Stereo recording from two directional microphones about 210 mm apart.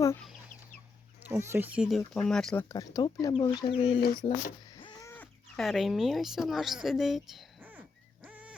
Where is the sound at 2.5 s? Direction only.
15° left (ahead or behind).